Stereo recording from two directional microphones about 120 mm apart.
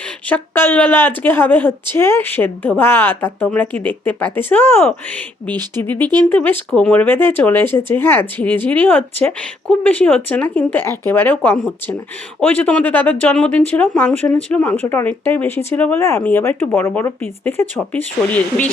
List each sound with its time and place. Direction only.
0.3 s a woman's voice: 15° left (ahead or behind)
6.0 s speech: 35° right (ahead or behind)
6.3 s a woman's voice: 15° left (ahead or behind)